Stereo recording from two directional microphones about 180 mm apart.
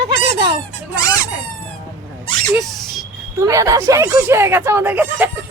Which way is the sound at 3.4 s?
15° right (ahead or behind).